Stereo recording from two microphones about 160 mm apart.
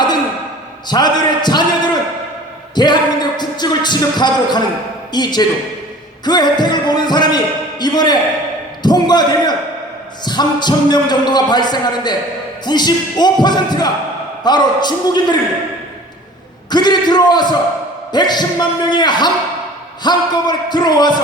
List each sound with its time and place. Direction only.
0.9 s speech: 25° left (ahead or behind)
2.7 s a sound: 25° left (ahead or behind)
5.1 s a man's voice: 25° left (ahead or behind)
16.6 s speech: 25° left (ahead or behind)